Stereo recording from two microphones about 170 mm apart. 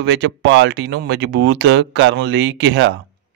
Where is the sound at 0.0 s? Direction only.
90° right.